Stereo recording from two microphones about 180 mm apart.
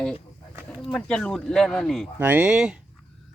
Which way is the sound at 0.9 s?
5° left (ahead or behind).